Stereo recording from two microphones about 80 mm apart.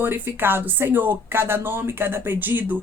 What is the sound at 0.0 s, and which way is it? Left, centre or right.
Speech, right.